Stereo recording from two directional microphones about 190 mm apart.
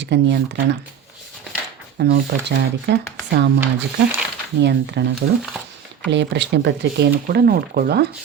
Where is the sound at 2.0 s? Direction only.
60° right (ahead or behind).